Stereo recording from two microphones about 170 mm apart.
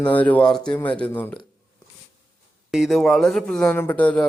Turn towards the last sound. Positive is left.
turn(degrees=10)  # may be behind; listen again after turning